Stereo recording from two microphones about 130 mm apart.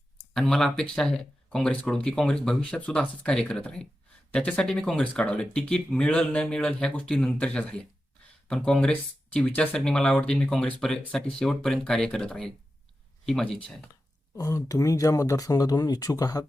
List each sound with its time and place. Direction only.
0.3 s speech: 5° left (ahead or behind)
14.3 s speech: 25° left (ahead or behind)